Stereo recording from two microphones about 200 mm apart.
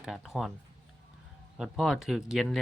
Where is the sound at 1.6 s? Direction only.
5° right (ahead or behind).